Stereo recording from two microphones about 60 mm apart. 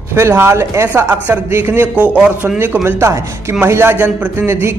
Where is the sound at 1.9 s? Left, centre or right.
Right.